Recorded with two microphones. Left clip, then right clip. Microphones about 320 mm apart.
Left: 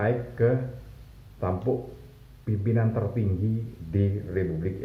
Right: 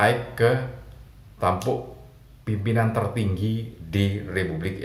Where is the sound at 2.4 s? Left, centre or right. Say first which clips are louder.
Right 4 dB; right.